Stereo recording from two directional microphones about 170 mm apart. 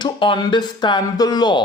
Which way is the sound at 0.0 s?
30° left (ahead or behind).